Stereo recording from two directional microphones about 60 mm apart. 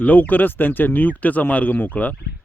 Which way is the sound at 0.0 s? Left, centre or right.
Left.